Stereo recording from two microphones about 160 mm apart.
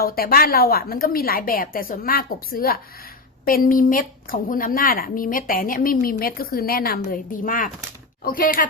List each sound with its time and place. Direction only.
0.0 s a woman's voice: 70° left (ahead or behind)